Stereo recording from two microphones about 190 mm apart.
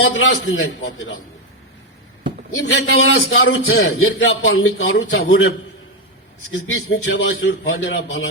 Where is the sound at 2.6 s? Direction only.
80° left.